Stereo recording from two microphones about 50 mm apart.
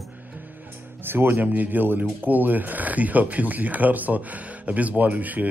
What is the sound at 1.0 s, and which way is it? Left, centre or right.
Speech, right.